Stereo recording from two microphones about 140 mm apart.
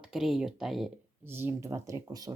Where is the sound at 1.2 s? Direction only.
15° right (ahead or behind).